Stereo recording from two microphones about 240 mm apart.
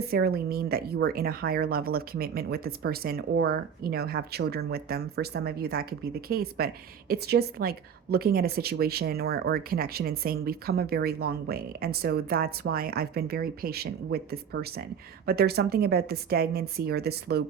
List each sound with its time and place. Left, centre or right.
0.1 s a woman's voice: right